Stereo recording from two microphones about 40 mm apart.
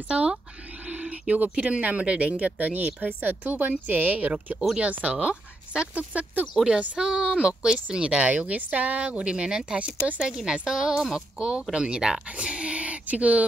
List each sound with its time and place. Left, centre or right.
0.1 s speech: right
0.8 s owl: right
1.6 s speech: right
5.3 s a sound: right
6.5 s a woman's voice: centre
7.0 s a woman's voice: centre
8.2 s speech: right
9.0 s speech: right
10.2 s a woman's voice: centre; by 13.5 s right